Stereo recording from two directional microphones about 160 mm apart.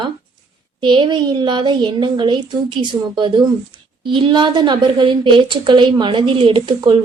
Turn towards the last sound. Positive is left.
turn(degrees=-30)  # may be behind; listen again after turning